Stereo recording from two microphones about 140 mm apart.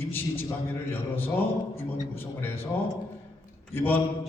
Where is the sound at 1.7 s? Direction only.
15° left (ahead or behind).